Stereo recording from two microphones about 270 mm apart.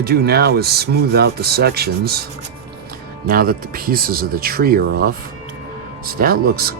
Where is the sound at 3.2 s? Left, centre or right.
Right.